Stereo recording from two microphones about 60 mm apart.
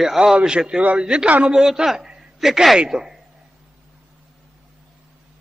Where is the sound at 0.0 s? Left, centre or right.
Centre.